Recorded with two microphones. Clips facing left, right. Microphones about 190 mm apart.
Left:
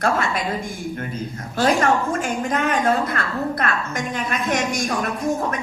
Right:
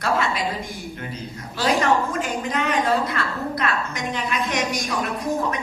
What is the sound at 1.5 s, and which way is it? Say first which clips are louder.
A woman's voice: left 2 dB; 50° left (ahead or behind).